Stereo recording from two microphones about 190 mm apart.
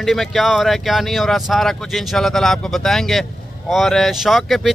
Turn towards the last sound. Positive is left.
turn(degrees=0)  # may be behind; listen again after turning